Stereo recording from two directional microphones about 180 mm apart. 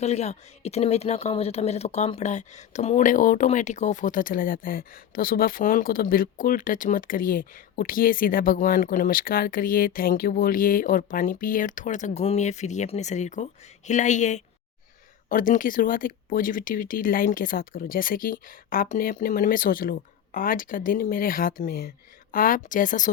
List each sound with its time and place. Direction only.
0.0 s speech: 35° left (ahead or behind)